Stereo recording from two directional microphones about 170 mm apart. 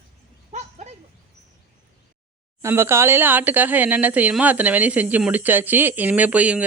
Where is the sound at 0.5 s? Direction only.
40° right (ahead or behind).